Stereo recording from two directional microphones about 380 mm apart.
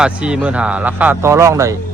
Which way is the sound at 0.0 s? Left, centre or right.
Centre.